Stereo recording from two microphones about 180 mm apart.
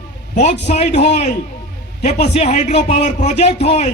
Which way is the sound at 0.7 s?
40° left (ahead or behind).